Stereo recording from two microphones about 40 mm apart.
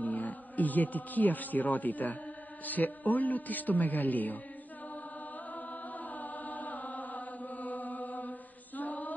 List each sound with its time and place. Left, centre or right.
0.0 s a man's voice: left
5.5 s chant: left